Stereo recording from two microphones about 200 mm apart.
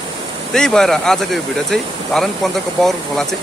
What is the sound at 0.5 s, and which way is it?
Speech, 5° left (ahead or behind).